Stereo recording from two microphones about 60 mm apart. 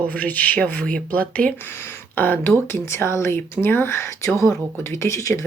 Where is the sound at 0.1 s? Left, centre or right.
Left.